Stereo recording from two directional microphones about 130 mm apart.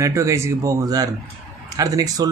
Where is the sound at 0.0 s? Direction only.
25° right (ahead or behind).